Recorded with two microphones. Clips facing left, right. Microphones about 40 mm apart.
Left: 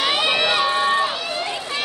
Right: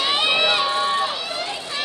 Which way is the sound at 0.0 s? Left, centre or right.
Left.